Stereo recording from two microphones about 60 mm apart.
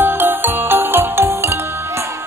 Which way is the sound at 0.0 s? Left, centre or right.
Right.